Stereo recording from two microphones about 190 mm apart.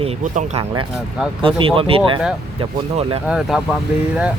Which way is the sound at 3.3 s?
5° right (ahead or behind).